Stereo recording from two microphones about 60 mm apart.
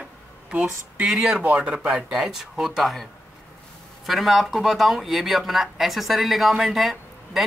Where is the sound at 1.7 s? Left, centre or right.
Centre.